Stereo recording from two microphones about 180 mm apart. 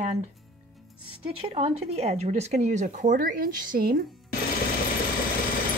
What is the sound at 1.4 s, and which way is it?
Speech, 35° right (ahead or behind).